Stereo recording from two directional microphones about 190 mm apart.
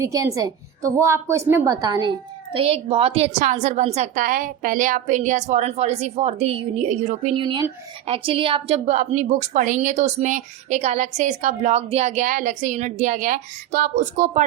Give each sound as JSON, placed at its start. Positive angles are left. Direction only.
{"t": 0.0, "sound": "a woman's voice", "side_deg": -15}